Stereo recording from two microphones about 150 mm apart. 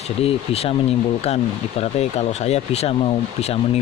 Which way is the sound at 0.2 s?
40° left (ahead or behind).